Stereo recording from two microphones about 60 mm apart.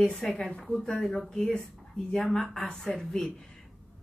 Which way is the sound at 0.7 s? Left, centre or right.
Centre.